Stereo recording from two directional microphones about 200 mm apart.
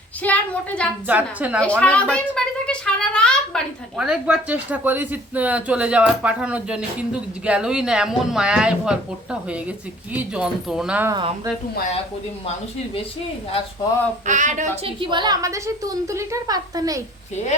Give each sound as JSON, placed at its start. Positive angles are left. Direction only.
{"t": 0.2, "sound": "a woman's voice", "side_deg": 10}
{"t": 1.0, "sound": "a woman's voice", "side_deg": -10}
{"t": 1.6, "sound": "a woman's voice", "side_deg": 5}
{"t": 10.1, "sound": "a woman's voice", "side_deg": -5}
{"t": 14.3, "sound": "a woman's voice", "side_deg": -40}
{"t": 14.8, "sound": "a woman's voice", "side_deg": -25}